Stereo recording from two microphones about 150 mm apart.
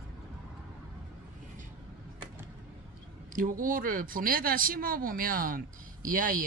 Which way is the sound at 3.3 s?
65° right (ahead or behind).